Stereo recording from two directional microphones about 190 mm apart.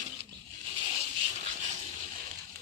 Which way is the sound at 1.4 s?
40° right (ahead or behind).